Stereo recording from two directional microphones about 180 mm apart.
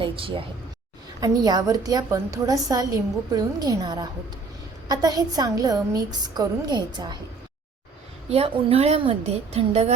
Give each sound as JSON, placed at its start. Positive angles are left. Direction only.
{"t": 0.0, "sound": "a woman's voice", "side_deg": -30}
{"t": 8.3, "sound": "a woman's voice", "side_deg": -35}